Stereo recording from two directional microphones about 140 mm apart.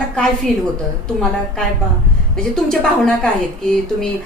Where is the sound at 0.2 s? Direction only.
5° left (ahead or behind).